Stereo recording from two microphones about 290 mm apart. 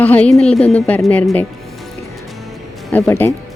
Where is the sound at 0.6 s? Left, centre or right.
Left.